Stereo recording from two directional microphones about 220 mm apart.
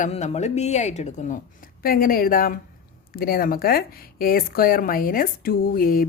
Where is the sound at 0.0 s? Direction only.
30° left (ahead or behind).